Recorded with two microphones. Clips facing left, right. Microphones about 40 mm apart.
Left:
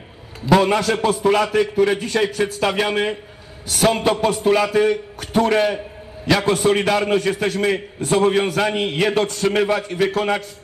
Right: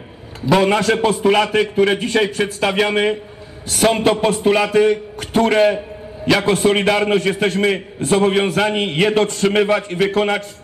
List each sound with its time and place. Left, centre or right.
0.6 s a man's voice: right